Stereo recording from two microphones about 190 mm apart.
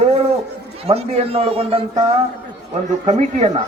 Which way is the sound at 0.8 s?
30° right (ahead or behind).